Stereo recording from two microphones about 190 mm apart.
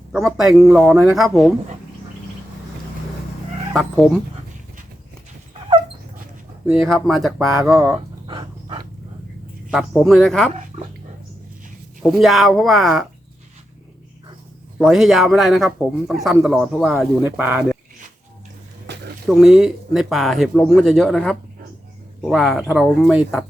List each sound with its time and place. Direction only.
0.3 s speech: centre (ahead or behind)
3.7 s speech: centre (ahead or behind)
6.7 s speech: centre (ahead or behind)
7.9 s a sound: 25° right (ahead or behind)
9.7 s speech: centre (ahead or behind)
12.0 s speech: centre (ahead or behind)
14.8 s speech: centre (ahead or behind)
17.2 s speech: 10° right (ahead or behind)
18.9 s a sound: 65° right (ahead or behind)
19.3 s speech: centre (ahead or behind)